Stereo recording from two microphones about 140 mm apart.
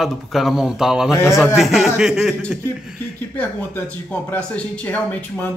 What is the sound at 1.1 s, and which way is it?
Speech, 20° left (ahead or behind).